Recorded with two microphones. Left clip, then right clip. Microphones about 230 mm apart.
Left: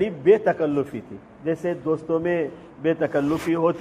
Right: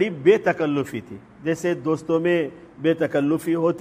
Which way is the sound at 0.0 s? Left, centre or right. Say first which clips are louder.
Even; right.